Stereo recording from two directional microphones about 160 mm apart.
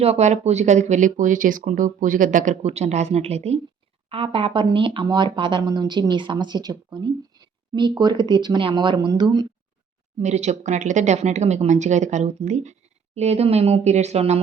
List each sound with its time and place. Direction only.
0.0 s a woman's voice: 45° right (ahead or behind); by 9.5 s 25° right (ahead or behind)
10.2 s speech: 45° right (ahead or behind)